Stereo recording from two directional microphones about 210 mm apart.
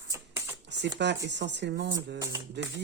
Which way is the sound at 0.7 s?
55° right (ahead or behind).